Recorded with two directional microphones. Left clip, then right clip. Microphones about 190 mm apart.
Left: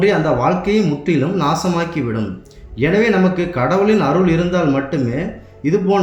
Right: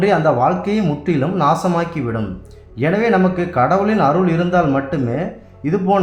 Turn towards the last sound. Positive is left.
turn(degrees=-30)  # may be behind; listen again after turning